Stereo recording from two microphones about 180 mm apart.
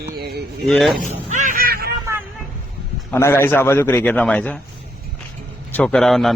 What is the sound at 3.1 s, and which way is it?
A man's voice, 15° left (ahead or behind).